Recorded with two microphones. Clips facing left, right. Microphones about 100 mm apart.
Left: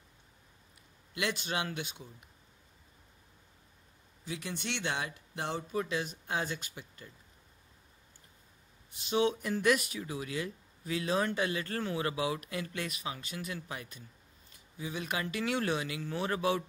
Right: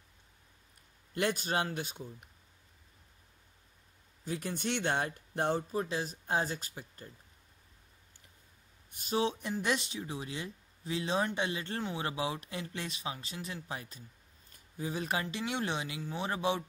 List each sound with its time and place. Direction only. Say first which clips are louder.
1.1 s speech: right 3 dB; 45° right (ahead or behind)
4.2 s speech: right 3 dB; 45° right (ahead or behind)
8.9 s speech: left 2 dB; 40° right (ahead or behind)
14.5 s a sound: right 2 dB; 40° right (ahead or behind)
15.2 s speech: left 3 dB; 20° right (ahead or behind)